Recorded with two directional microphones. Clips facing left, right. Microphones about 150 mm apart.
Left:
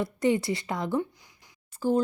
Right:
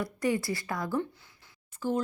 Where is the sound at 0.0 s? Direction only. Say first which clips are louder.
Left 4 dB; 25° left (ahead or behind).